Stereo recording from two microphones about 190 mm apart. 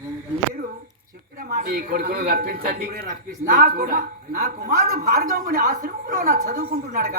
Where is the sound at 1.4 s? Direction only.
45° right (ahead or behind).